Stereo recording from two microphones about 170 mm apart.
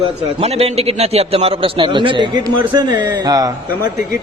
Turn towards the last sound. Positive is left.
turn(degrees=-20)  # may be behind; listen again after turning